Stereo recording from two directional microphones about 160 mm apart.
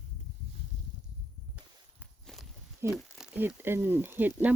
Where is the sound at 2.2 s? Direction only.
Centre (ahead or behind).